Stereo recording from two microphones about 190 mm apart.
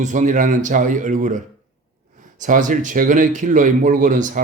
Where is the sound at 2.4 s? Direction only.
40° right (ahead or behind).